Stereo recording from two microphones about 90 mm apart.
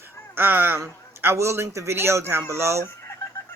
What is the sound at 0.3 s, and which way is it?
A man's voice, 25° right (ahead or behind).